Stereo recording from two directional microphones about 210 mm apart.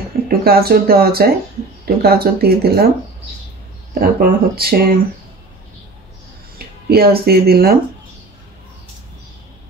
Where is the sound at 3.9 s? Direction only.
45° right (ahead or behind).